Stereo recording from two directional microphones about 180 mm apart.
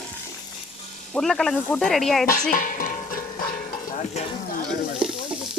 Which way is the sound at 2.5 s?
50° left (ahead or behind).